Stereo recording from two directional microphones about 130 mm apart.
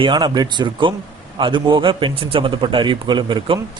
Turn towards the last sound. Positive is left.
turn(degrees=-40)  # may be behind; listen again after turning